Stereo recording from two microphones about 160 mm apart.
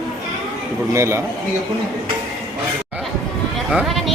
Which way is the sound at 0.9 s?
15° right (ahead or behind).